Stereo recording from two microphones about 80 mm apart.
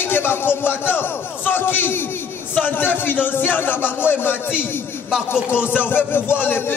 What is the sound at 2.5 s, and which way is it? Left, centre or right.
A man's voice, left.